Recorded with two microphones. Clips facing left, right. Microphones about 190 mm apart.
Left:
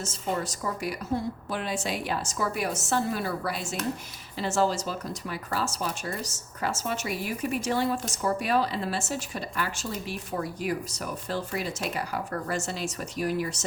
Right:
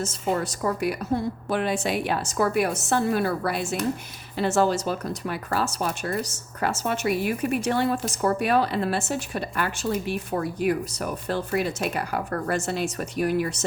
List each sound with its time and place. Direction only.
0.0 s a woman's voice: 60° right (ahead or behind)